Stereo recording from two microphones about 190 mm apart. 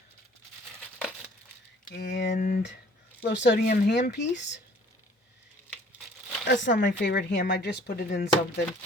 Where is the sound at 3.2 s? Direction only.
65° left (ahead or behind).